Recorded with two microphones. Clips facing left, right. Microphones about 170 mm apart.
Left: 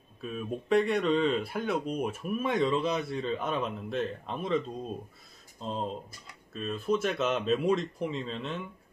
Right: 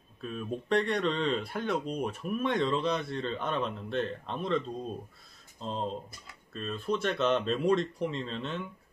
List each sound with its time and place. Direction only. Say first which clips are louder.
0.2 s speech: left 1 dB; 5° left (ahead or behind)